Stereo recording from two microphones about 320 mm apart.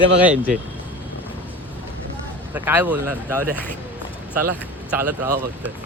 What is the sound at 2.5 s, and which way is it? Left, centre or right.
Speech, centre.